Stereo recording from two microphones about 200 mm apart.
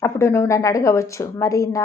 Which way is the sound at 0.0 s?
15° left (ahead or behind).